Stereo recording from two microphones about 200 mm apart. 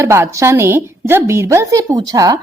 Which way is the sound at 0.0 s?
15° right (ahead or behind).